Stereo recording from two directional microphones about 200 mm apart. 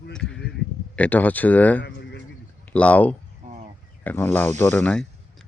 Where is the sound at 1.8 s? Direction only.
55° left (ahead or behind).